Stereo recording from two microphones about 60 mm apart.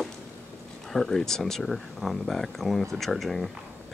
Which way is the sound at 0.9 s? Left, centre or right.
Centre.